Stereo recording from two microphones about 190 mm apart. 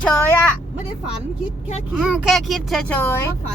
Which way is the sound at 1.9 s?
5° right (ahead or behind).